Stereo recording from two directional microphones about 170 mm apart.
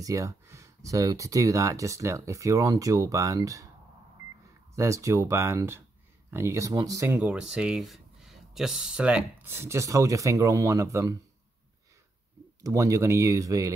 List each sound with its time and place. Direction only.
0.0 s speech: 20° right (ahead or behind)
4.7 s speech: 20° right (ahead or behind)
7.2 s speech: 5° right (ahead or behind)
12.6 s speech: 20° right (ahead or behind)